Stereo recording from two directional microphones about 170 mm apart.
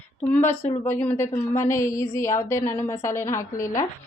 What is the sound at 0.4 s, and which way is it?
A woman's voice, 10° left (ahead or behind).